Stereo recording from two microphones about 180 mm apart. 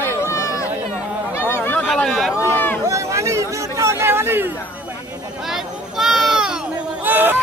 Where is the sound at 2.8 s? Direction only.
15° right (ahead or behind).